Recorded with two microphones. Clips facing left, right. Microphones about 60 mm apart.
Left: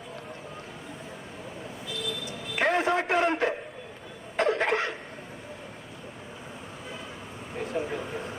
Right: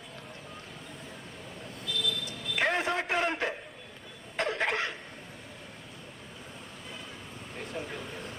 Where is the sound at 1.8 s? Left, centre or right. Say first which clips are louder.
Right 1 dB; centre.